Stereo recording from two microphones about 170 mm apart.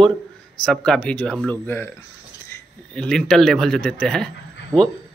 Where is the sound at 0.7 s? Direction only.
5° left (ahead or behind).